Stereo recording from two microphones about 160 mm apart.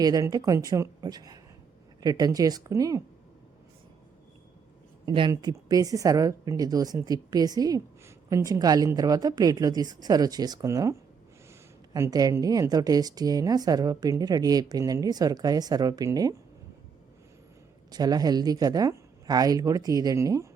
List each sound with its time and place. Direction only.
0.0 s speech: 25° right (ahead or behind)
5.0 s speech: 30° right (ahead or behind)
11.9 s speech: 20° right (ahead or behind)
17.9 s speech: 25° right (ahead or behind)